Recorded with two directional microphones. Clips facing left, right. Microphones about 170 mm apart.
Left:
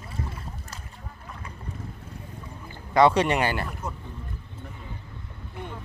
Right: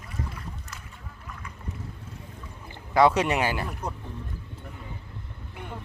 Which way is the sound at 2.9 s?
5° right (ahead or behind).